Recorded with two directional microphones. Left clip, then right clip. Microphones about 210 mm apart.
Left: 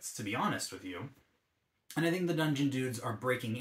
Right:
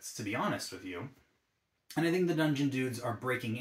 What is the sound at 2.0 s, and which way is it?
Speech, 15° left (ahead or behind).